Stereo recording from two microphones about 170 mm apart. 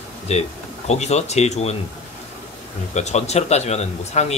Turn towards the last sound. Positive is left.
turn(degrees=40)  # may be behind; listen again after turning